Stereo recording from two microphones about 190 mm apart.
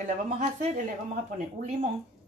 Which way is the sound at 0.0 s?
40° right (ahead or behind).